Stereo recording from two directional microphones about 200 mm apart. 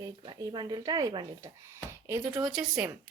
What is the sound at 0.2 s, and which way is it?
Speech, 20° right (ahead or behind).